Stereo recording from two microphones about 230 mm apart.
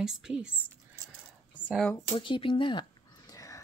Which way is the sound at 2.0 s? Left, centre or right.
Left.